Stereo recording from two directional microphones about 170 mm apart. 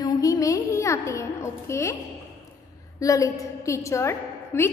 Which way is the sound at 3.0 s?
20° left (ahead or behind).